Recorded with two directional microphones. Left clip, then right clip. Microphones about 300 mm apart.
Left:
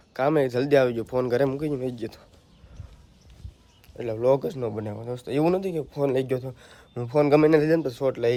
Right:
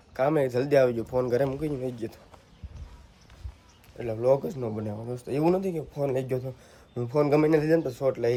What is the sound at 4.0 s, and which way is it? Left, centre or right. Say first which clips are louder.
Speech: left 2 dB; left.